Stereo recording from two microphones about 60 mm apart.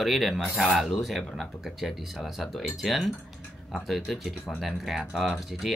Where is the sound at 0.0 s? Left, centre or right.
Centre.